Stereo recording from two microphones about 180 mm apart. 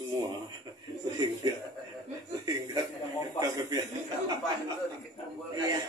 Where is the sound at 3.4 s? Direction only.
20° right (ahead or behind).